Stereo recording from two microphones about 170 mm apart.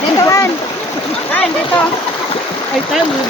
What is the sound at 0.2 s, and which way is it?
Stream, 20° left (ahead or behind).